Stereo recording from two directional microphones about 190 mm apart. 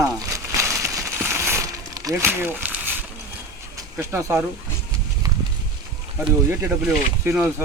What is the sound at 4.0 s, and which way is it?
Speech, 10° right (ahead or behind).